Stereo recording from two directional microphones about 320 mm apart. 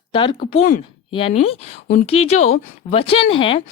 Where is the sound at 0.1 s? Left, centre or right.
Centre.